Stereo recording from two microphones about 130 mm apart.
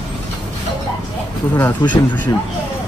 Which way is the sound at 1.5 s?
15° left (ahead or behind).